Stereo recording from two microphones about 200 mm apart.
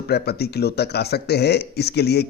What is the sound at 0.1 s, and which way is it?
Speech, 55° left (ahead or behind).